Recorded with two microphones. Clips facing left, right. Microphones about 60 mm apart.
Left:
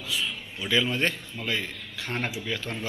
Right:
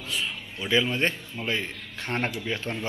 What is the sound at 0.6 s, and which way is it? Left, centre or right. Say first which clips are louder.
A man's voice: right 1 dB; right.